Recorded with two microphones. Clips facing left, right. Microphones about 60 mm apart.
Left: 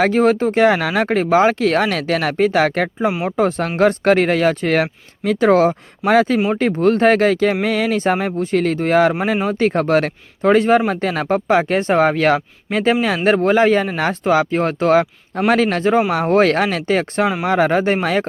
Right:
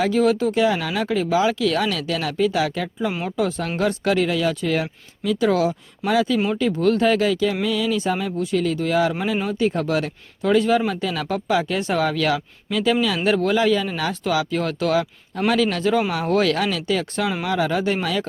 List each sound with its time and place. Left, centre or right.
0.0 s speech: left